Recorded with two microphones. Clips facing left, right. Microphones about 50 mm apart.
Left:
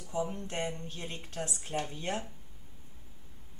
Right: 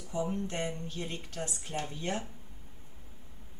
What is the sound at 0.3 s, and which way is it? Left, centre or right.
A woman's voice, centre.